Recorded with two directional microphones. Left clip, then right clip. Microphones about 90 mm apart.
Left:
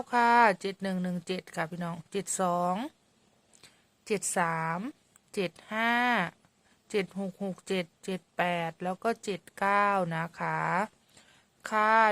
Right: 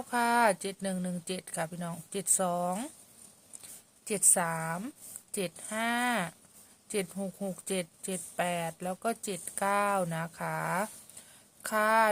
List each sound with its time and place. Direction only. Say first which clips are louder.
0.1 s a woman's voice: left 4 dB; 35° left (ahead or behind)